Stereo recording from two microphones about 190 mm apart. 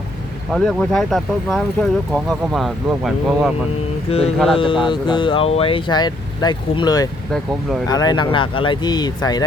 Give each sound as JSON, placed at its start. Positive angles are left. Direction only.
{"t": 0.5, "sound": "speech", "side_deg": 0}
{"t": 4.1, "sound": "speech", "side_deg": 30}